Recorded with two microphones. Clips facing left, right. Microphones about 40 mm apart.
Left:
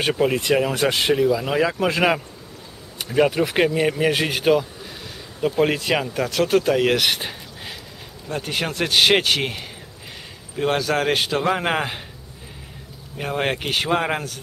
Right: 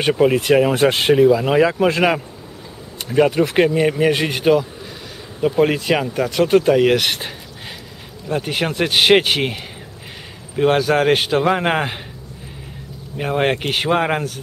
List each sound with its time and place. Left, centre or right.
0.0 s speech: centre
0.4 s speech: centre
13.2 s speech: centre